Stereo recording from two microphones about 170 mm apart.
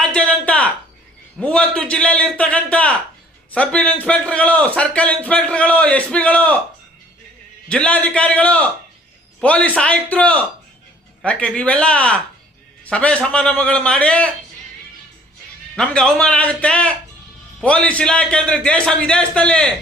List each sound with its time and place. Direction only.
0.0 s a sound: 5° left (ahead or behind)
1.4 s a man's voice: 5° left (ahead or behind)
7.7 s a man's voice: 5° left (ahead or behind)
15.7 s a man's voice: 5° left (ahead or behind)